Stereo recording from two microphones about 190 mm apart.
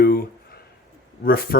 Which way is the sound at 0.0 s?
50° left (ahead or behind).